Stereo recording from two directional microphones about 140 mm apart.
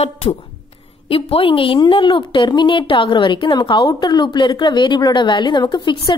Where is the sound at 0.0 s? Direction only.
50° left (ahead or behind).